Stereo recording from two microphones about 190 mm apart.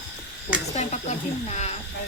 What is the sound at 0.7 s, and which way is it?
Speech, 35° left (ahead or behind).